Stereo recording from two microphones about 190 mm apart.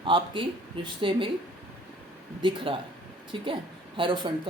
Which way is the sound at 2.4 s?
25° right (ahead or behind).